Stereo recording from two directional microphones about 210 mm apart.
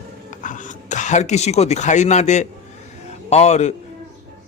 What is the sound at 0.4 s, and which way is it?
Speech, 35° left (ahead or behind).